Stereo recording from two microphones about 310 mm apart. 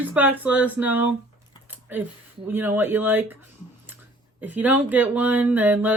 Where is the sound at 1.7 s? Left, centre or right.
Centre.